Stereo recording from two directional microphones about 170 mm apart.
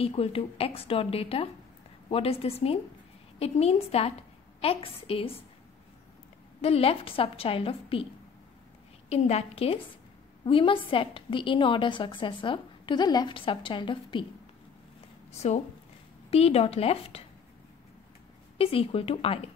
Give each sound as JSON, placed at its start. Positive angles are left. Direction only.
{"t": 0.0, "sound": "a woman's voice", "side_deg": 35}
{"t": 6.6, "sound": "a woman's voice", "side_deg": 35}
{"t": 9.1, "sound": "a woman's voice", "side_deg": 40}
{"t": 15.3, "sound": "a woman's voice", "side_deg": 40}
{"t": 18.6, "sound": "a woman's voice", "side_deg": 35}